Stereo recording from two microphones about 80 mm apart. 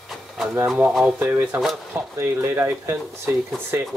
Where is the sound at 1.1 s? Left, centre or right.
Right.